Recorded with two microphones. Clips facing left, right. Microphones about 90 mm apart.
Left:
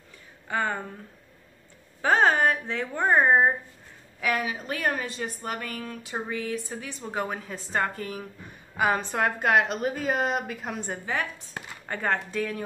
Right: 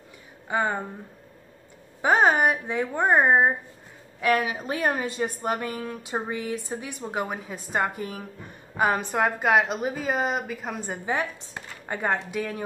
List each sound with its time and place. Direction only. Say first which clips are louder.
0.5 s speech: right 2 dB; 15° right (ahead or behind)
2.0 s a woman's voice: right 1 dB; 15° right (ahead or behind)
11.5 s speech: right 1 dB; 15° right (ahead or behind)